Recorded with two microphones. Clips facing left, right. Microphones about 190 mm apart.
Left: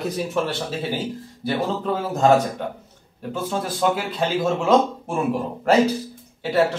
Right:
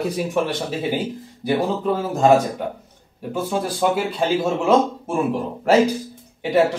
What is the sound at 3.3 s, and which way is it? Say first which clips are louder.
Speech: right 3 dB; 10° right (ahead or behind).